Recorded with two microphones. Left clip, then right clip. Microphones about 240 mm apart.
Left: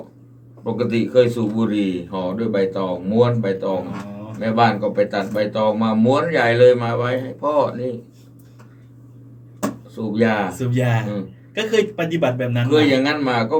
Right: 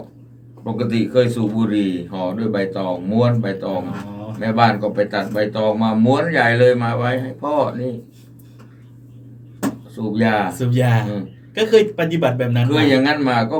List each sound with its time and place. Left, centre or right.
0.6 s speech: centre
9.9 s speech: centre
10.6 s speech: right
12.6 s speech: centre